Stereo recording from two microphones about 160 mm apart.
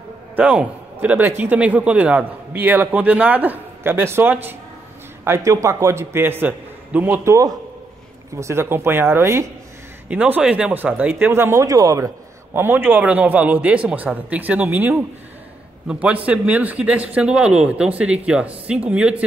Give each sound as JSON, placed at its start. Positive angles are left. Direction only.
{"t": 0.4, "sound": "a man's voice", "side_deg": -10}